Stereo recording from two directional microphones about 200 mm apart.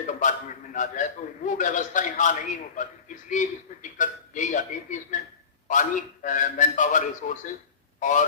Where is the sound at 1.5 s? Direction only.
40° left (ahead or behind).